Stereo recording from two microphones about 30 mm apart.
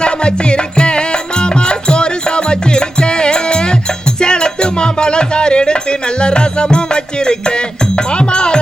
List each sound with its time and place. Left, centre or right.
0.0 s music: left